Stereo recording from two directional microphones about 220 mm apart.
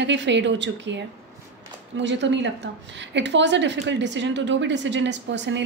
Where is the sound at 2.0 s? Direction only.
55° right (ahead or behind).